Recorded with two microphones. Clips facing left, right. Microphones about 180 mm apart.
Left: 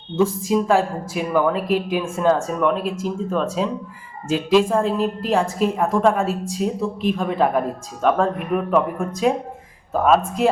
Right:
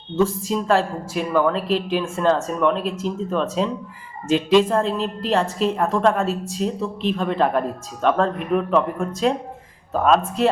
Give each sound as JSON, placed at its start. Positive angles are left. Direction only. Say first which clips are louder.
{"t": 0.2, "sound": "a woman's voice", "louder": "left 2 dB", "side_deg": 10}